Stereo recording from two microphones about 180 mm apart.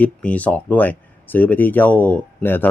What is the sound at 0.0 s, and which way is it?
Speech, 10° left (ahead or behind).